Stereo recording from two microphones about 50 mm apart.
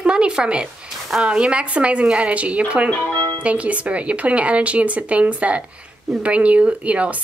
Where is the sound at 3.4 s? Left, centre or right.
Right.